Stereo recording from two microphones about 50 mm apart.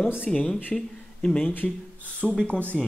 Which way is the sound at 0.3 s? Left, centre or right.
Centre.